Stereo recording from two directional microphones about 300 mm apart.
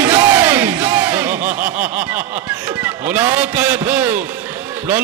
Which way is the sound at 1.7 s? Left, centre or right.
Centre.